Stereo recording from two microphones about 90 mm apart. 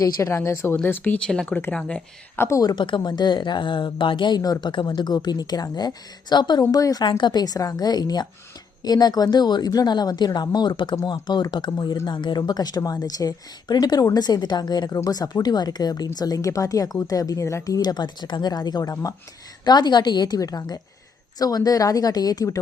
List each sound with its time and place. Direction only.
0.0 s speech: 35° left (ahead or behind)
0.8 s speech: 20° left (ahead or behind)
2.3 s speech: 25° left (ahead or behind)
2.7 s speech: 65° left (ahead or behind)
4.6 s speech: 60° left (ahead or behind); by 7.0 s 40° left (ahead or behind)
7.0 s speech: 60° left (ahead or behind); by 22.6 s 40° left (ahead or behind)